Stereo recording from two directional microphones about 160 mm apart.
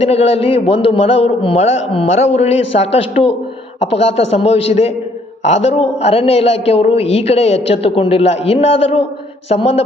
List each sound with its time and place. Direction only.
0.0 s a man's voice: 40° left (ahead or behind)